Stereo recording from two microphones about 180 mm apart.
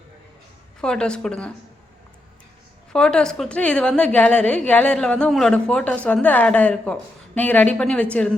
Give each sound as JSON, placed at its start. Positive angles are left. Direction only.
{"t": 0.8, "sound": "a woman's voice", "side_deg": 5}
{"t": 2.9, "sound": "a woman's voice", "side_deg": 5}